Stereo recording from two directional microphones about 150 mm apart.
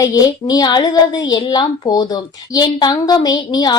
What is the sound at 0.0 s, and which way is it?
A woman's voice, 25° left (ahead or behind).